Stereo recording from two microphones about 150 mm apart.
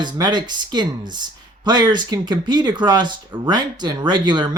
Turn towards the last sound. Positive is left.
turn(degrees=-30)  # may be behind; listen again after turning